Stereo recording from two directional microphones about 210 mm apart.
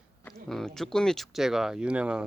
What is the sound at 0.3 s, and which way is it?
Speech, 5° left (ahead or behind).